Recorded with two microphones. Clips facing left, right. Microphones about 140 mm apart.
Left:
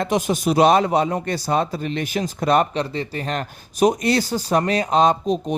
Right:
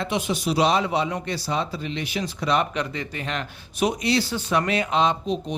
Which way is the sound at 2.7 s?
35° left (ahead or behind).